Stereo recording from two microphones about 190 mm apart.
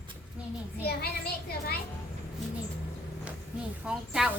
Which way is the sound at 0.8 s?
55° left (ahead or behind).